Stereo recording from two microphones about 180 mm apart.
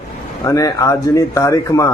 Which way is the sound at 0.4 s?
20° left (ahead or behind).